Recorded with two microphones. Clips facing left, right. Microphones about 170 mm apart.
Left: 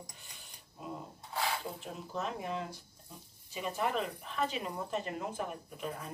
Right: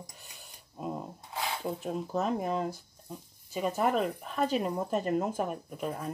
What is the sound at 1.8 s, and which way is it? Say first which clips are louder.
Speech: right 8 dB; 45° right (ahead or behind).